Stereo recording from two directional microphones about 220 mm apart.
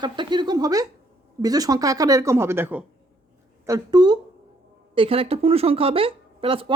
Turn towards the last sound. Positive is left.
turn(degrees=-25)  # may be behind; listen again after turning